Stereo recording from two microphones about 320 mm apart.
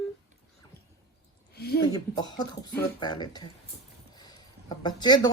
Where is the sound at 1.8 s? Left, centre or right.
Centre.